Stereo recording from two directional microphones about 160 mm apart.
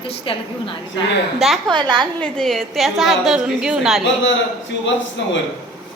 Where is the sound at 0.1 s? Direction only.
35° left (ahead or behind).